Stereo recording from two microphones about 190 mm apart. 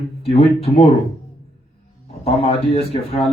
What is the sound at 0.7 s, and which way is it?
Speech, 25° left (ahead or behind).